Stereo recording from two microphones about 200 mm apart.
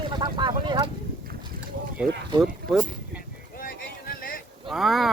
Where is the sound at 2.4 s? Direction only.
Centre (ahead or behind).